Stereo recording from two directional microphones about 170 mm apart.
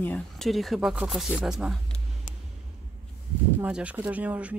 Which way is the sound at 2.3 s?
45° left (ahead or behind).